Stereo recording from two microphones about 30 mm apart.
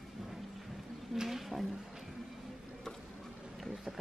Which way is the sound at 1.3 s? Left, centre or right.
Centre.